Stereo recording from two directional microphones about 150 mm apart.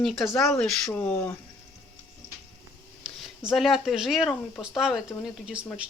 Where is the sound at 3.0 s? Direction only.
Centre (ahead or behind).